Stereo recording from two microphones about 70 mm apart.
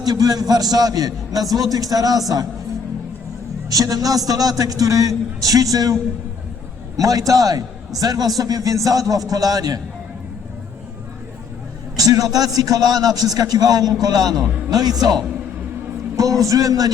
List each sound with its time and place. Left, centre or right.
0.0 s a man's voice: right
3.7 s a man's voice: right
11.9 s a man's voice: right
16.1 s a man's voice: right